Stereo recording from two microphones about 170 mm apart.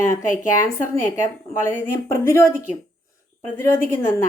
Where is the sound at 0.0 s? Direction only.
15° left (ahead or behind).